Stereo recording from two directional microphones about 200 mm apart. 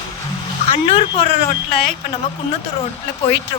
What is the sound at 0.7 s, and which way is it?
Speech, 25° left (ahead or behind).